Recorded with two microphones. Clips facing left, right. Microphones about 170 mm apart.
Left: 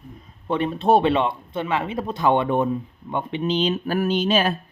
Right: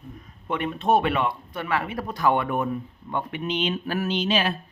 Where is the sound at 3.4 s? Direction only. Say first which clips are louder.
Left 6 dB; 35° left (ahead or behind).